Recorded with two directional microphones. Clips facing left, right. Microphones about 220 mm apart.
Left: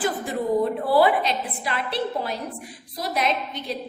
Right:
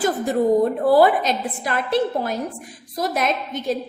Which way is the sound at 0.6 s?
45° right (ahead or behind).